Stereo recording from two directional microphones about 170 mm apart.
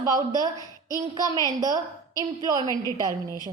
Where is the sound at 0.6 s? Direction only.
20° left (ahead or behind).